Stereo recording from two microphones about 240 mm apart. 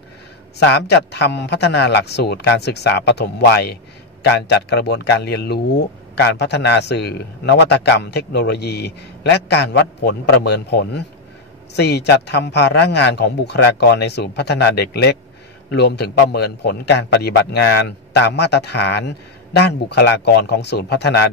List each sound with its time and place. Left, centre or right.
0.6 s speech: left